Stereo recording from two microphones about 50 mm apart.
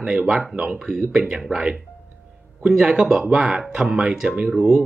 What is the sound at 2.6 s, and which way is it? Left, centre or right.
Speech, centre.